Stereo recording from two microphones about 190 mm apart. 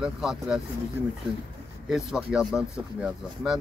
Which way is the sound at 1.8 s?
Centre (ahead or behind).